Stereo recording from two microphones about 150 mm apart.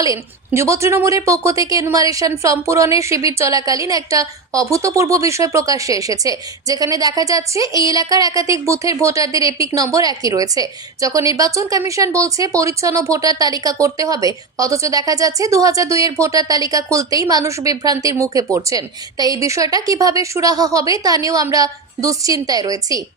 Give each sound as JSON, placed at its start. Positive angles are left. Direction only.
{"t": 0.0, "sound": "a woman's voice", "side_deg": -20}